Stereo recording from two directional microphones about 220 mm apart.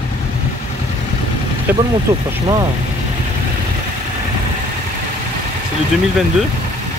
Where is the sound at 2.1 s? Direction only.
25° right (ahead or behind).